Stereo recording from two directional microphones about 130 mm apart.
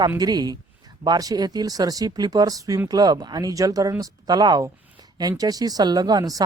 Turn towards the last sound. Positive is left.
turn(degrees=-30)  # may be behind; listen again after turning